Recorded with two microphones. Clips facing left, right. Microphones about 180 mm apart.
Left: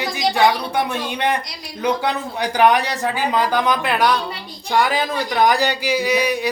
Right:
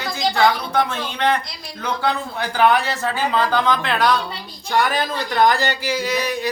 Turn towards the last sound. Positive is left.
turn(degrees=15)  # may be behind; listen again after turning